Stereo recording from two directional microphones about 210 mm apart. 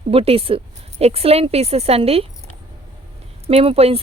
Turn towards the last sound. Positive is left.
turn(degrees=-30)  # may be behind; listen again after turning